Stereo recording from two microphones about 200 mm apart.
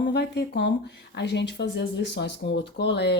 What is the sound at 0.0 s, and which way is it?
Speech, 55° left (ahead or behind).